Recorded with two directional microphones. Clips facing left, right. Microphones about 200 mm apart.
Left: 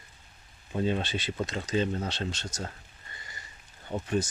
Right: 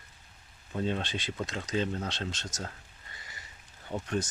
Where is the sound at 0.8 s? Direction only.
5° left (ahead or behind).